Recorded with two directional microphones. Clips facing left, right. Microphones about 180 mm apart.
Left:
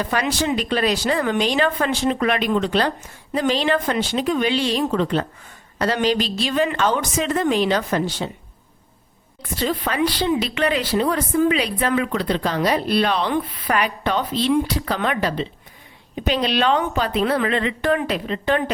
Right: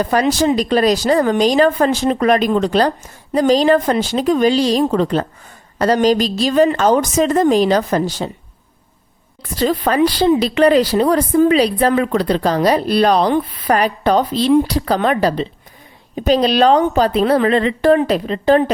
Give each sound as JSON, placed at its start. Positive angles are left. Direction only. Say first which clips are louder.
{"t": 0.0, "sound": "speech", "louder": "right 7 dB", "side_deg": -40}
{"t": 9.6, "sound": "speech", "louder": "right 7 dB", "side_deg": -40}